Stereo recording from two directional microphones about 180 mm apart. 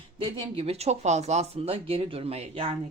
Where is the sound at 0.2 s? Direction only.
35° right (ahead or behind).